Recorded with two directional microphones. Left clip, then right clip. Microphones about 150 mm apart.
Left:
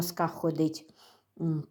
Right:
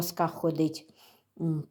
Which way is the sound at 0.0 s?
5° right (ahead or behind).